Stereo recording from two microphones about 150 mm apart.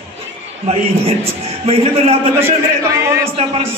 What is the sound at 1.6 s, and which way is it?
Speech, 40° right (ahead or behind).